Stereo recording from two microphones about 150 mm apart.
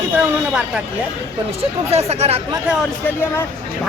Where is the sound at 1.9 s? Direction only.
45° right (ahead or behind).